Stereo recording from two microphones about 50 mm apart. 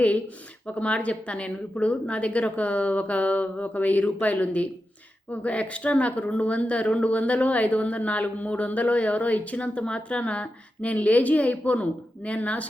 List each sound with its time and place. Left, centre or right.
0.8 s speech: left